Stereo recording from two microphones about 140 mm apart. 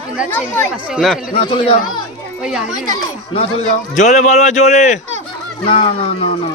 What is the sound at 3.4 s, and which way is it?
A man's voice, 50° left (ahead or behind).